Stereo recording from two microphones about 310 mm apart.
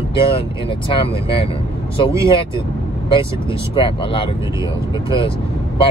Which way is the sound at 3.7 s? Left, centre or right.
Centre.